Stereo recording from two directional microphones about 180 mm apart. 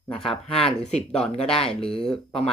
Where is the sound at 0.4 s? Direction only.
30° left (ahead or behind).